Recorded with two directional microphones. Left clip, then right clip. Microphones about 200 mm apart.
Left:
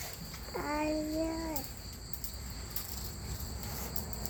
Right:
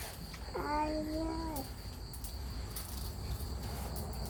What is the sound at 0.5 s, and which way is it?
Child singing, 25° left (ahead or behind).